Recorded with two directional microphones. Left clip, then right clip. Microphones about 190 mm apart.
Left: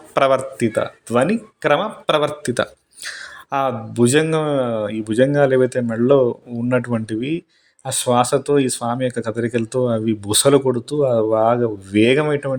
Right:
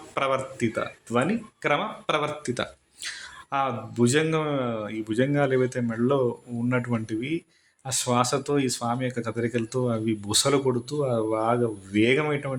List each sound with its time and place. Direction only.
0.1 s speech: 35° left (ahead or behind)